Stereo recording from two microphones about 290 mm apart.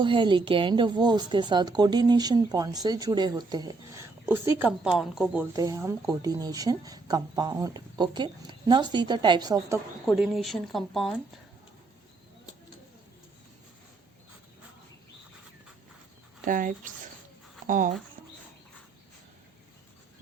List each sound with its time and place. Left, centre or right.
0.0 s speech: centre
10.1 s speech: centre
16.5 s speech: right